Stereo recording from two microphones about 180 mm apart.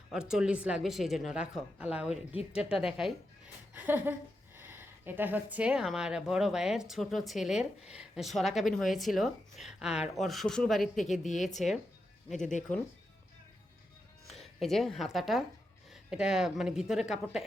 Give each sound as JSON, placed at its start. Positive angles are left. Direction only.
{"t": 0.1, "sound": "speech", "side_deg": -5}
{"t": 3.8, "sound": "a sound", "side_deg": -10}
{"t": 4.5, "sound": "speech", "side_deg": -10}
{"t": 11.1, "sound": "speech", "side_deg": 40}
{"t": 14.3, "sound": "speech", "side_deg": 0}